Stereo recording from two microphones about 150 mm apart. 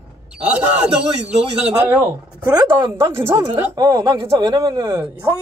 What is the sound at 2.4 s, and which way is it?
A man's voice, 25° right (ahead or behind).